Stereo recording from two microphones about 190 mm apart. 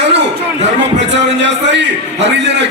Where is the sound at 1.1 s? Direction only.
70° right (ahead or behind).